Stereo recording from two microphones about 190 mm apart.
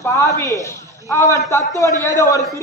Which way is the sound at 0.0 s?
15° left (ahead or behind).